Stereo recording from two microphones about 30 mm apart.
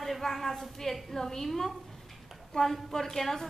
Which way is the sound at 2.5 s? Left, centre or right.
Centre.